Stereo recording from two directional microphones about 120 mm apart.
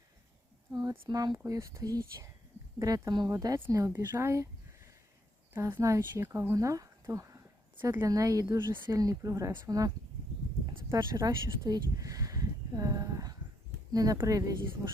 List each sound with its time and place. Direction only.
0.7 s speech: 30° right (ahead or behind)
5.8 s speech: 25° right (ahead or behind)